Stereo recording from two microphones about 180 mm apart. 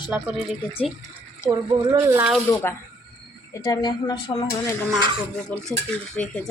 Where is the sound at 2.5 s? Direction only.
10° left (ahead or behind).